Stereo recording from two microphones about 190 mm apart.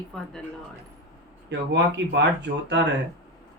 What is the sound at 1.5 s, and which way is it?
Speech, 65° right (ahead or behind).